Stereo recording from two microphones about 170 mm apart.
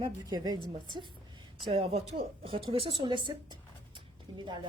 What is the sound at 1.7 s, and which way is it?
A woman's voice, 35° right (ahead or behind).